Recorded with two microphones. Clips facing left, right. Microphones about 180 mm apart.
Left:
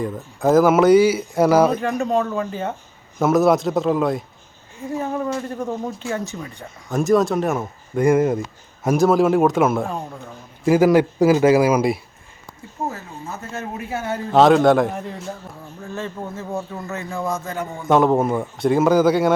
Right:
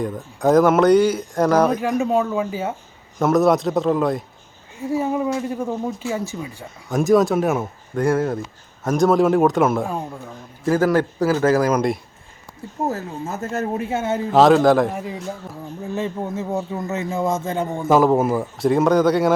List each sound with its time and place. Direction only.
0.0 s a man's voice: 5° left (ahead or behind)
1.8 s a man's voice: 5° right (ahead or behind)
7.9 s a man's voice: 10° left (ahead or behind)
10.7 s a man's voice: 10° left (ahead or behind)
12.9 s speech: 45° right (ahead or behind)
13.8 s a man's voice: 25° right (ahead or behind)
14.3 s a man's voice: centre (ahead or behind)
15.8 s a man's voice: 15° right (ahead or behind)
17.8 s a man's voice: centre (ahead or behind)